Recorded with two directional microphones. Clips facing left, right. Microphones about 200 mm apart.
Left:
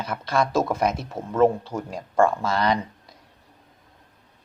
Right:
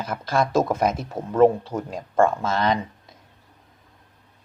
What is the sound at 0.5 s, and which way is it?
Speech, 30° right (ahead or behind).